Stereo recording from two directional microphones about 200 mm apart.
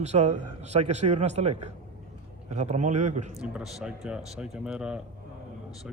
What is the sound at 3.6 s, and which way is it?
Speech, 5° right (ahead or behind).